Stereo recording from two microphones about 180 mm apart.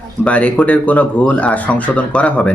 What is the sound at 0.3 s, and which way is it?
Speech, 5° left (ahead or behind).